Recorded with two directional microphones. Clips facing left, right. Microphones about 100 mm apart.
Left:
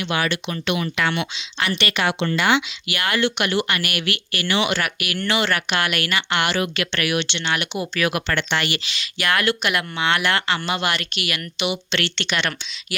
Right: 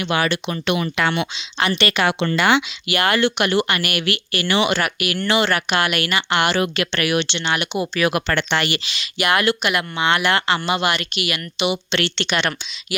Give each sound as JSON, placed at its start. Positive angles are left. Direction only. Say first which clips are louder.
{"t": 0.1, "sound": "speech", "louder": "right 3 dB", "side_deg": -40}
{"t": 2.0, "sound": "speech", "louder": "right 1 dB", "side_deg": -65}
{"t": 3.1, "sound": "speech", "louder": "right 2 dB", "side_deg": -35}
{"t": 8.1, "sound": "speech", "louder": "right 3 dB", "side_deg": -35}
{"t": 11.6, "sound": "speech", "louder": "right 3 dB", "side_deg": -20}
{"t": 12.9, "sound": "speech", "louder": "right 4 dB", "side_deg": -10}